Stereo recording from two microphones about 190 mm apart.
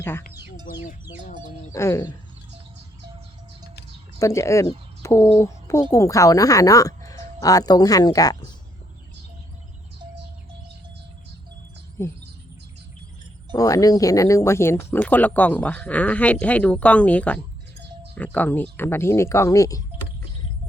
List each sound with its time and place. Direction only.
0.0 s speech: 10° left (ahead or behind)
1.7 s speech: 15° left (ahead or behind)
4.2 s speech: 15° left (ahead or behind)
5.0 s bird: 15° left (ahead or behind)
5.4 s speech: 15° left (ahead or behind)
12.0 s speech: 15° left (ahead or behind)
13.5 s speech: 15° left (ahead or behind)